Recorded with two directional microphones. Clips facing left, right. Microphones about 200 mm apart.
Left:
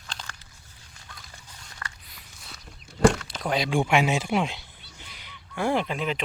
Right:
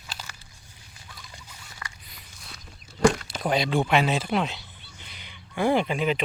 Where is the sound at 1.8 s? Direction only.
10° right (ahead or behind).